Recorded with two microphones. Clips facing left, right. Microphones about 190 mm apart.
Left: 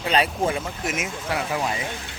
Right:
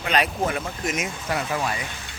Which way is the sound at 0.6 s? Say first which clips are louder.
Even; 5° left (ahead or behind).